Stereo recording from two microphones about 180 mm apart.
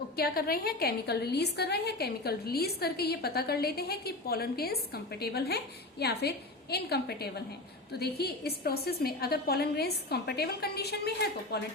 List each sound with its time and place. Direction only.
0.2 s a woman's voice: 55° left (ahead or behind)